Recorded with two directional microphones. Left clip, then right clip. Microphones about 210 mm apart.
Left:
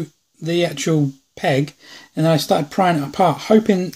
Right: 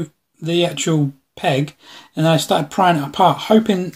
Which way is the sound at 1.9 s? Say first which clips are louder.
Right 2 dB; 30° left (ahead or behind).